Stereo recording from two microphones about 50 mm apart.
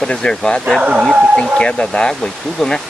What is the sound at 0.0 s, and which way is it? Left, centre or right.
Speech, centre.